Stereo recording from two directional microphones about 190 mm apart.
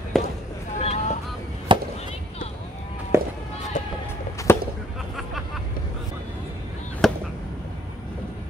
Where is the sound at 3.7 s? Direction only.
40° left (ahead or behind).